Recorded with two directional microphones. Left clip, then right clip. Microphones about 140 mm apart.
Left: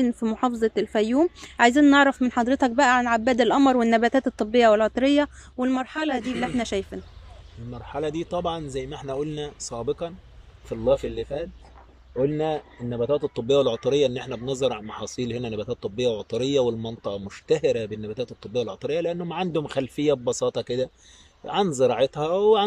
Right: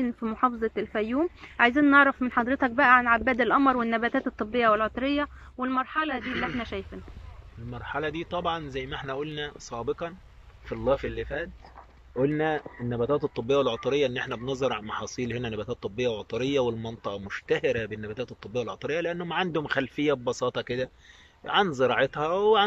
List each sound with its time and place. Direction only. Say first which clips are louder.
0.0 s speech: left 2 dB; 35° left (ahead or behind)
7.7 s speech: left 2 dB; 30° left (ahead or behind)